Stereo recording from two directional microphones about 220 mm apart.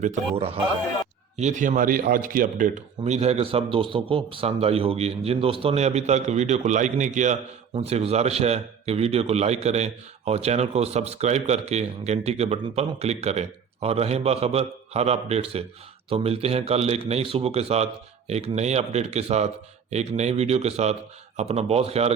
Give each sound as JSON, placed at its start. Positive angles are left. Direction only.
{"t": 0.0, "sound": "a man's voice", "side_deg": -30}